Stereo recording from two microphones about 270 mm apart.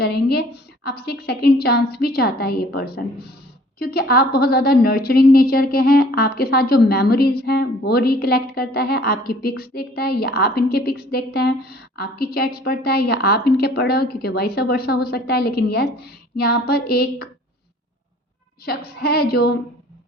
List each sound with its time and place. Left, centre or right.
0.0 s a woman's voice: left
18.6 s a woman's voice: left